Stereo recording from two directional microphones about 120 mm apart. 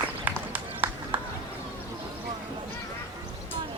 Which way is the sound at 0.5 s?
15° right (ahead or behind).